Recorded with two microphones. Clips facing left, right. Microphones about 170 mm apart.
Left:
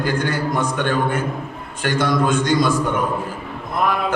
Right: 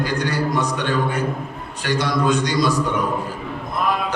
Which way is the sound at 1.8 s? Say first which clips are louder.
Left 1 dB; 50° left (ahead or behind).